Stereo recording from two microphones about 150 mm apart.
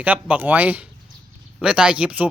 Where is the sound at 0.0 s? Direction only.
10° right (ahead or behind).